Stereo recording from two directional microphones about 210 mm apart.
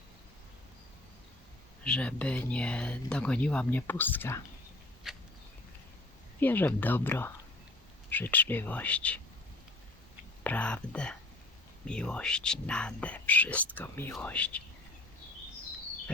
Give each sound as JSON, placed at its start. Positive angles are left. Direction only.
{"t": 1.8, "sound": "speech", "side_deg": 5}
{"t": 5.0, "sound": "a sound", "side_deg": 0}
{"t": 6.4, "sound": "speech", "side_deg": 10}
{"t": 10.4, "sound": "speech", "side_deg": 5}